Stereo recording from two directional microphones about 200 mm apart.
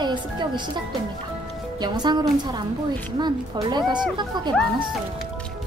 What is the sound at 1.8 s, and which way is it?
Speech, 20° right (ahead or behind).